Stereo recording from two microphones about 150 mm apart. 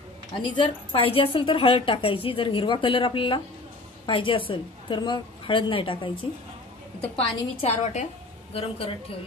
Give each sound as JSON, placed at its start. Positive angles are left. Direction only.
{"t": 0.4, "sound": "a woman's voice", "side_deg": 35}
{"t": 7.2, "sound": "a woman's voice", "side_deg": 45}